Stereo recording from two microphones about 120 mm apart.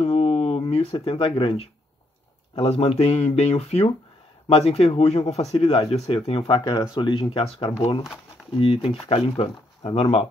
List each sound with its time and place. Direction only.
0.0 s a sound: 55° left (ahead or behind)
2.6 s speech: 55° left (ahead or behind)
6.6 s speech: 30° left (ahead or behind)
7.0 s speech: 45° left (ahead or behind)